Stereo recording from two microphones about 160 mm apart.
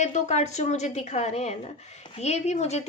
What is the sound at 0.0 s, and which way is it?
A woman's voice, 45° left (ahead or behind).